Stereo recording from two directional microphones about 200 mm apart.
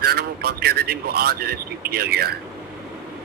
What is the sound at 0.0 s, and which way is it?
Speech, 50° right (ahead or behind).